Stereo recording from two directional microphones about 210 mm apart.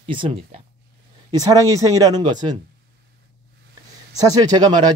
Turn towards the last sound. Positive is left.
turn(degrees=-20)  # may be behind; listen again after turning